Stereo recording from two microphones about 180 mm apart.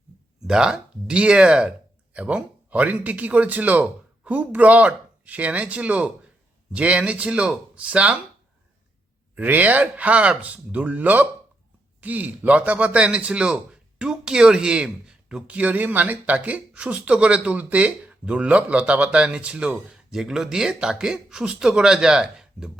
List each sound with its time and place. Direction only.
0.4 s a man's voice: 5° right (ahead or behind)
9.3 s a man's voice: 10° right (ahead or behind)